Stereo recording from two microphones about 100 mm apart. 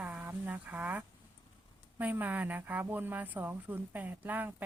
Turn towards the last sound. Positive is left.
turn(degrees=-20)  # may be behind; listen again after turning